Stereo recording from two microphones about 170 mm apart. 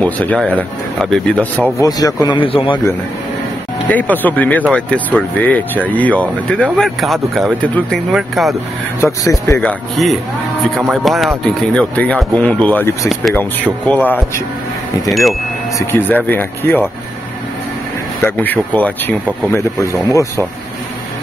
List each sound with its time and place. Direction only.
0.0 s speech: 10° left (ahead or behind)
1.8 s speech: 20° left (ahead or behind)
3.9 s speech: 10° left (ahead or behind)
9.0 s speech: 20° left (ahead or behind)
10.9 s speech: centre (ahead or behind)
15.0 s speech: centre (ahead or behind)
15.9 s speech: 10° left (ahead or behind)
18.2 s speech: 10° left (ahead or behind)